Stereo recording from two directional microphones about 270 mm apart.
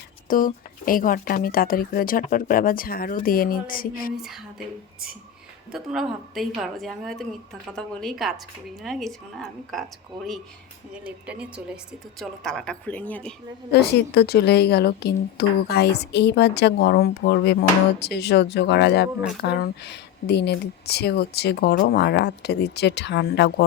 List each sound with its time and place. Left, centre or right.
0.3 s a woman's voice: left
4.2 s a woman's voice: centre
5.7 s a woman's voice: centre
11.0 s a woman's voice: centre
13.7 s a woman's voice: left